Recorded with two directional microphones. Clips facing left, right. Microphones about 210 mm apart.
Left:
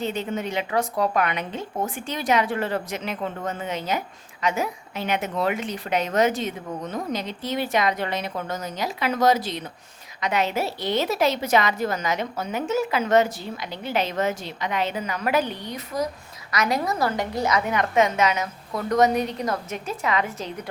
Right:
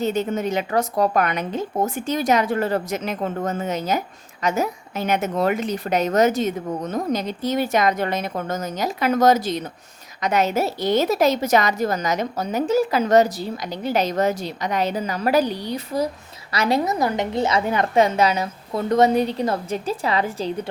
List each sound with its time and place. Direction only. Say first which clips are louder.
0.0 s a woman's voice: right 5 dB; 40° right (ahead or behind)